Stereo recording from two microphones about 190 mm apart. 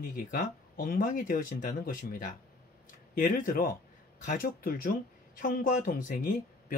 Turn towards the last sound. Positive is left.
turn(degrees=50)  # may be behind; listen again after turning